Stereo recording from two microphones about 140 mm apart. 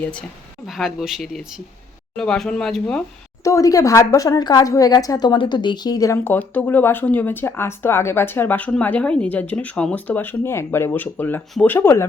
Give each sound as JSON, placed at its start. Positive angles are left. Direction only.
{"t": 0.0, "sound": "a woman's voice", "side_deg": 10}
{"t": 3.4, "sound": "a woman's voice", "side_deg": 25}